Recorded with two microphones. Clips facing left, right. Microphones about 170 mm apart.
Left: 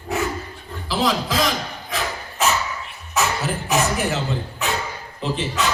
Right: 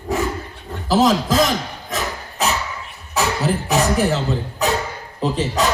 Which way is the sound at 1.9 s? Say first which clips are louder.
Right 2 dB; 35° right (ahead or behind).